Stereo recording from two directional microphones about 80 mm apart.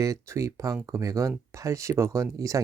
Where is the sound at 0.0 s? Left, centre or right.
Right.